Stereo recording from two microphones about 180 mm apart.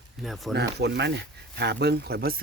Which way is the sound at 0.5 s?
70° right (ahead or behind).